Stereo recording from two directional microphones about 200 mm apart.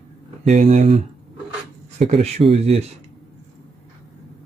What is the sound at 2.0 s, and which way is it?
Speech, 30° right (ahead or behind).